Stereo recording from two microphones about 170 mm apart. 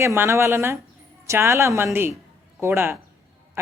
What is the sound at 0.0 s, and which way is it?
Speech, 15° right (ahead or behind).